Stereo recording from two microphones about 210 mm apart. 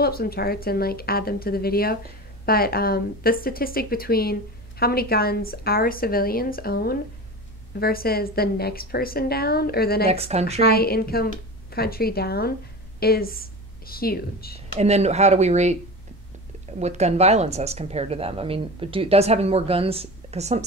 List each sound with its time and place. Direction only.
0.0 s speech: 45° left (ahead or behind)
10.0 s a woman's voice: 30° right (ahead or behind)
10.6 s speech: 45° left (ahead or behind)
14.7 s speech: 30° right (ahead or behind)
16.8 s a woman's voice: 30° right (ahead or behind)